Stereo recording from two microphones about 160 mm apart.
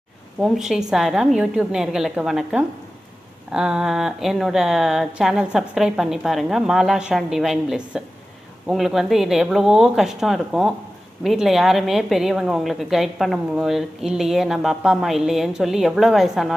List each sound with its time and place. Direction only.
0.4 s a woman's voice: centre (ahead or behind)